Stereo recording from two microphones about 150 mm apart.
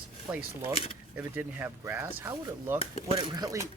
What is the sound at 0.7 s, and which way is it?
Cutlery, 40° left (ahead or behind).